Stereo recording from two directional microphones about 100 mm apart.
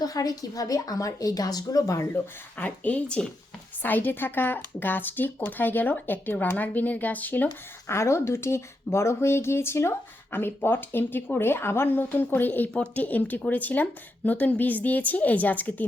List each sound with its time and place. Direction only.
0.0 s a woman's voice: 40° left (ahead or behind)
2.6 s a woman's voice: 15° left (ahead or behind)
7.4 s a woman's voice: 30° left (ahead or behind)